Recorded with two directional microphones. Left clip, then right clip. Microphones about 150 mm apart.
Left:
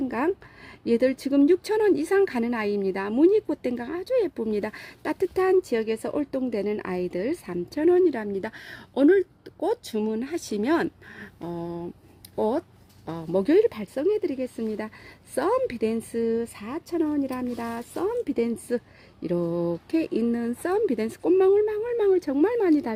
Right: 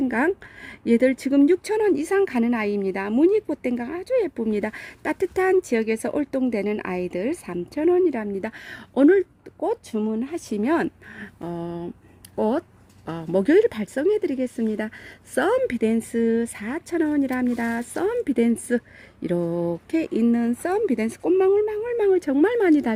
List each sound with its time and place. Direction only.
0.0 s speech: 25° right (ahead or behind)
9.6 s speech: 10° right (ahead or behind); by 23.0 s 30° right (ahead or behind)